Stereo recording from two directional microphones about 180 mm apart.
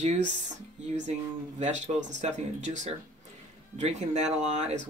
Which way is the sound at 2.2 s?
40° right (ahead or behind).